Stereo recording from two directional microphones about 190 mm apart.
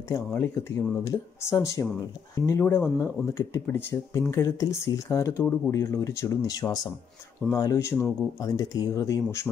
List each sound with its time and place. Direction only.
0.3 s speech: 15° left (ahead or behind)